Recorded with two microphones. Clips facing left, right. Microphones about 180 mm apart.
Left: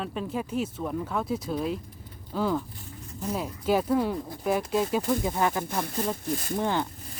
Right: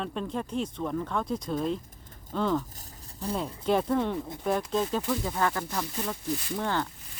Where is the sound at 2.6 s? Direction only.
40° right (ahead or behind).